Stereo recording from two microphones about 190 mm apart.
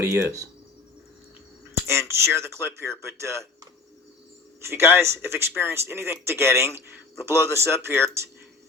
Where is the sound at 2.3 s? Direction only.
15° right (ahead or behind).